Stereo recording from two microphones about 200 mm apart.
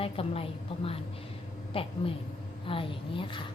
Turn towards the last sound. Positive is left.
turn(degrees=25)  # may be behind; listen again after turning